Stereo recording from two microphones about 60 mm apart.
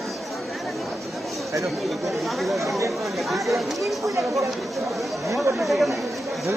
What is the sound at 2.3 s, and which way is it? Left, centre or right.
Speech, centre.